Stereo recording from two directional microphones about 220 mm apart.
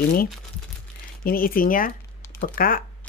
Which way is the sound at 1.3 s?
40° left (ahead or behind).